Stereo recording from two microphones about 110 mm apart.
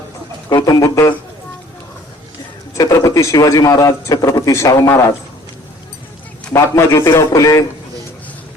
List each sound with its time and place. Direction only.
0.6 s a man's voice: 30° left (ahead or behind)
2.7 s speech: 30° left (ahead or behind)
6.5 s a man's voice: 25° left (ahead or behind)